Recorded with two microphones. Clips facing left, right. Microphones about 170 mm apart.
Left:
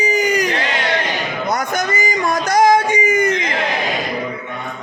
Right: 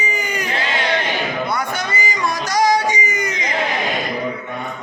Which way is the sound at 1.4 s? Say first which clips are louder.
Left 3 dB; 45° left (ahead or behind).